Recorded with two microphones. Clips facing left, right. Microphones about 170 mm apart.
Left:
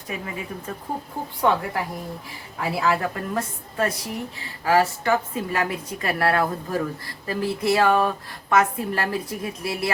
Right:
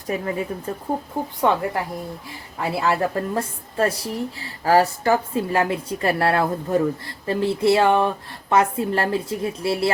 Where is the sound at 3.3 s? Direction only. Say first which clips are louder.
Right 2 dB; 30° right (ahead or behind).